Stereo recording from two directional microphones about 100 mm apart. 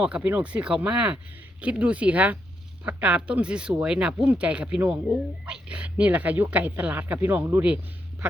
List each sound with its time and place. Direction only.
0.0 s speech: 15° right (ahead or behind)